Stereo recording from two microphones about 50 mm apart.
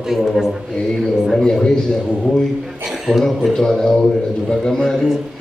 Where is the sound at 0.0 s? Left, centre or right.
Centre.